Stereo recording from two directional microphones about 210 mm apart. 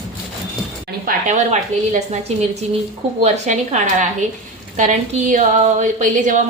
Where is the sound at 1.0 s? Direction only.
35° right (ahead or behind).